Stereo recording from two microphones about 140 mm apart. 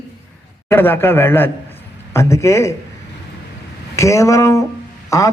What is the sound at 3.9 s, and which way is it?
Speech, 20° left (ahead or behind).